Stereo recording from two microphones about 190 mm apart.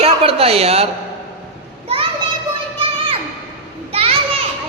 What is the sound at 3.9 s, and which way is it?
Children playing, 30° right (ahead or behind).